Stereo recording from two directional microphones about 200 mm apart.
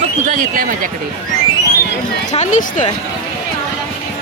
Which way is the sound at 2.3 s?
35° left (ahead or behind).